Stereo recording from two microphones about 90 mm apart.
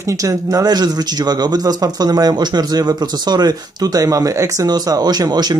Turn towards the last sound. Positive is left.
turn(degrees=-50)  # may be behind; listen again after turning